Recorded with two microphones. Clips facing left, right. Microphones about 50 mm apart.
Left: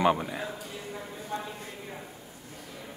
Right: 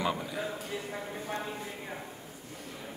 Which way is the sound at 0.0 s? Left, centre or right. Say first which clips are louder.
Left 7 dB; left.